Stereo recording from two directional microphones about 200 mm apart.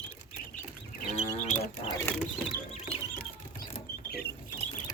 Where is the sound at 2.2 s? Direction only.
Centre (ahead or behind).